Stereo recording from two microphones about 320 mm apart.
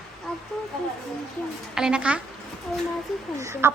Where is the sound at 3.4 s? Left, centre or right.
Centre.